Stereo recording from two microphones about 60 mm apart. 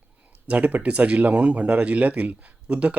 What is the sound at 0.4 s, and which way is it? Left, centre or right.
Speech, right.